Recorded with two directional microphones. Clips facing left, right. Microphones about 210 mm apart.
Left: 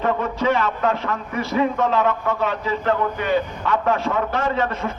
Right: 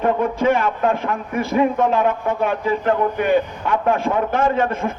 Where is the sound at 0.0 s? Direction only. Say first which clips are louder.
Right 3 dB; 50° right (ahead or behind).